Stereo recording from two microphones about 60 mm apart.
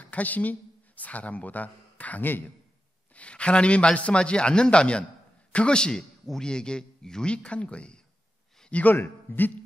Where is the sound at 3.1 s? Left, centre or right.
Centre.